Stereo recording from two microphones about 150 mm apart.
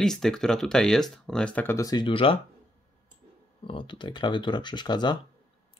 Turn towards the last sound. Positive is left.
turn(degrees=30)  # may be behind; listen again after turning